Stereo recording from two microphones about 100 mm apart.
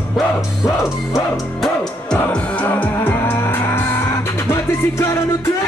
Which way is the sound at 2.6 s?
20° left (ahead or behind).